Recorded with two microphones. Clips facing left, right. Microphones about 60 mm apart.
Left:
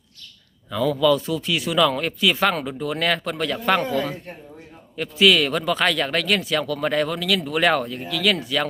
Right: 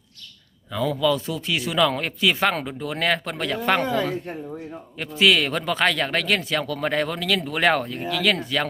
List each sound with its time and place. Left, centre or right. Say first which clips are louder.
0.7 s speech: left 3 dB; right
4.9 s speech: left 2 dB; right